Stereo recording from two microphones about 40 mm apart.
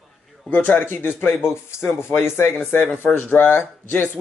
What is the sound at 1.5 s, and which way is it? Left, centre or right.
Speech, left.